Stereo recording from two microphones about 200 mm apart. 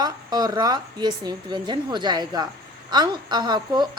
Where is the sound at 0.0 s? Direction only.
20° right (ahead or behind).